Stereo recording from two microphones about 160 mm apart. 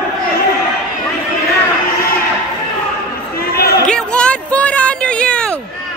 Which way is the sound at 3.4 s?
70° left (ahead or behind).